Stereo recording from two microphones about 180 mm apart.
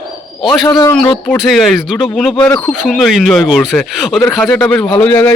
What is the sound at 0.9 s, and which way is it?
A man's voice, 5° left (ahead or behind).